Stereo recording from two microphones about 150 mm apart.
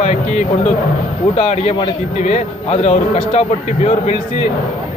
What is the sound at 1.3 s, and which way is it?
A man's voice, 45° left (ahead or behind).